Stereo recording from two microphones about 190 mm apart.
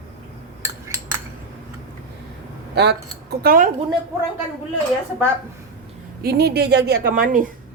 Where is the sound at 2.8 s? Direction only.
60° right (ahead or behind).